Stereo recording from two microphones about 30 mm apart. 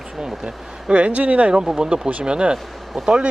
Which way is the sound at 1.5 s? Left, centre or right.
Right.